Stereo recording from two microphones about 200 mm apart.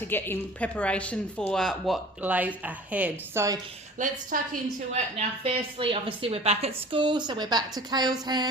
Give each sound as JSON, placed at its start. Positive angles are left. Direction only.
{"t": 0.0, "sound": "a woman's voice", "side_deg": 10}
{"t": 3.9, "sound": "a woman's voice", "side_deg": -40}
{"t": 5.1, "sound": "a woman's voice", "side_deg": -25}